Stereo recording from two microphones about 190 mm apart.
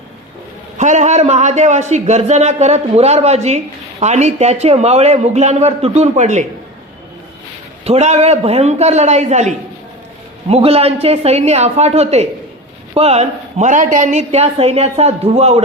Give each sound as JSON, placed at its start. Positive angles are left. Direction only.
{"t": 0.8, "sound": "a man's voice", "side_deg": -40}
{"t": 7.9, "sound": "a man's voice", "side_deg": -35}